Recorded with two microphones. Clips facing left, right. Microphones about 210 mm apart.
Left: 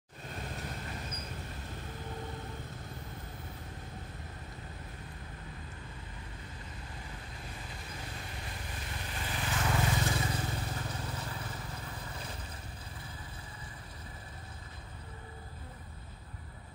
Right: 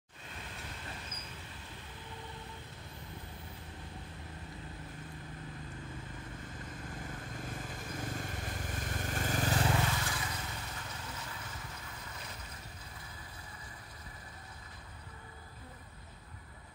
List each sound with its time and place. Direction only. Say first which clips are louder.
0.3 s a sound: left 6 dB; 45° left (ahead or behind)
1.3 s vehicle: left 6 dB; 45° left (ahead or behind)
7.3 s vehicle: right 4 dB; 50° right (ahead or behind)
9.9 s vehicle: left 6 dB; 25° left (ahead or behind)